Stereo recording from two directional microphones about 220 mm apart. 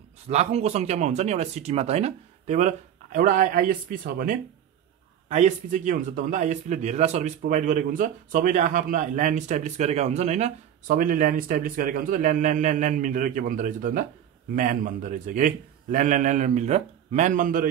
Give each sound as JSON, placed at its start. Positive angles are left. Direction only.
{"t": 0.3, "sound": "a man's voice", "side_deg": -30}